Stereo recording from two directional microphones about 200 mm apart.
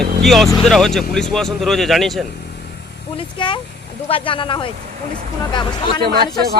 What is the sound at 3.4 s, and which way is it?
Speech, 25° left (ahead or behind).